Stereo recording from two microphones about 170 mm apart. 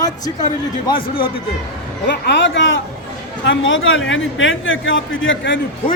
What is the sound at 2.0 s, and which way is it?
A man's voice, 90° left.